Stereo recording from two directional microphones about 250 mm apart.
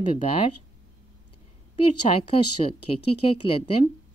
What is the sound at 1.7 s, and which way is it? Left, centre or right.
Speech, left.